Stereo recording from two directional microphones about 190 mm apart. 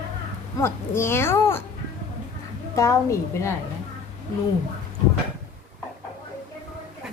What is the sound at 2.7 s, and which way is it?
Speech, 15° left (ahead or behind).